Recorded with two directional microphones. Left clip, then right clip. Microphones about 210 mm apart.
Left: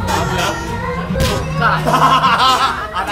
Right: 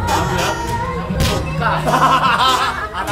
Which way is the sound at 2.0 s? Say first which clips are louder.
Left 2 dB; 15° left (ahead or behind).